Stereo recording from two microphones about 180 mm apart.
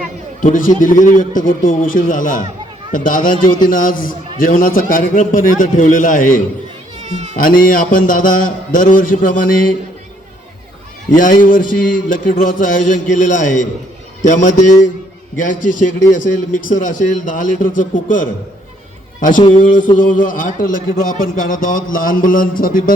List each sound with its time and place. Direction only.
0.4 s a man's voice: 50° left (ahead or behind)
7.0 s cat: 40° right (ahead or behind)
7.3 s a man's voice: 50° left (ahead or behind)
11.1 s a man's voice: 45° left (ahead or behind)